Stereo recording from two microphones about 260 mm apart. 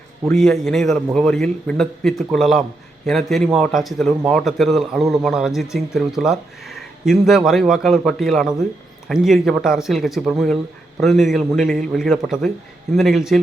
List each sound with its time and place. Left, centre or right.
0.3 s a man's voice: centre